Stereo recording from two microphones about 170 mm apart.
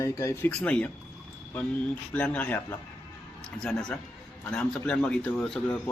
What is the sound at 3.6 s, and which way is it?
A man's voice, 5° left (ahead or behind).